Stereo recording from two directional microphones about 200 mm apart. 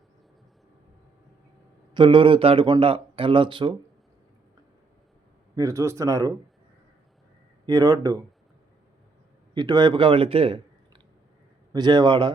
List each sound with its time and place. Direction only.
1.9 s speech: 25° right (ahead or behind)
5.5 s speech: 15° right (ahead or behind)
7.7 s speech: 15° right (ahead or behind)
9.6 s speech: 20° right (ahead or behind)